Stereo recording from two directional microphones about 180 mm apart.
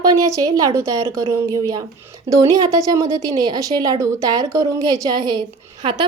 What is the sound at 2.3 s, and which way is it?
A woman's voice, 20° right (ahead or behind).